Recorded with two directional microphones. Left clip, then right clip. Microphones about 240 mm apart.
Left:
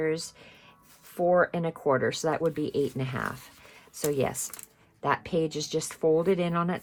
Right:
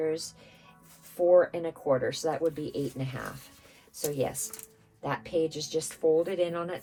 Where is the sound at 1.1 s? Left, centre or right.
Left.